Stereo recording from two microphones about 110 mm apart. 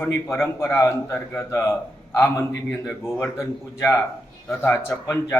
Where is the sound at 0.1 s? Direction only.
25° left (ahead or behind).